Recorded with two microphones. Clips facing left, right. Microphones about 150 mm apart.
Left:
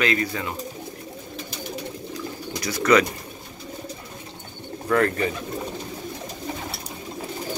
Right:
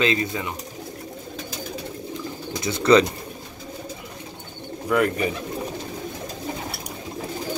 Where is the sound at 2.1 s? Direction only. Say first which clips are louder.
Right 1 dB; 25° right (ahead or behind).